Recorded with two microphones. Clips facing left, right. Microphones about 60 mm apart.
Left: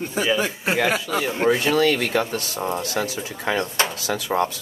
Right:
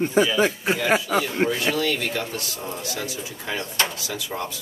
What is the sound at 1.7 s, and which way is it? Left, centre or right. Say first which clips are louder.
Speech: left 5 dB; left.